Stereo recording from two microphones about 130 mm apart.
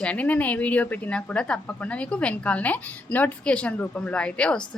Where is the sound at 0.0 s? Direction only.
10° left (ahead or behind).